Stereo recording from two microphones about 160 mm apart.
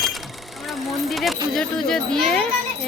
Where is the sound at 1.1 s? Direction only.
Centre (ahead or behind).